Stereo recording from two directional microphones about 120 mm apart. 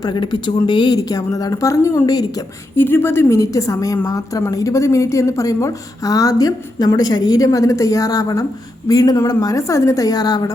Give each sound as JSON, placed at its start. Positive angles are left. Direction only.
{"t": 0.0, "sound": "speech", "side_deg": 40}
{"t": 2.7, "sound": "speech", "side_deg": 20}